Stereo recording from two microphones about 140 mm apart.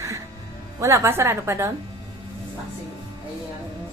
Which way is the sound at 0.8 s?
20° right (ahead or behind).